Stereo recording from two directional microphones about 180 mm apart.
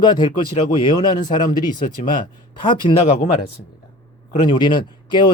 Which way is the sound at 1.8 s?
50° left (ahead or behind).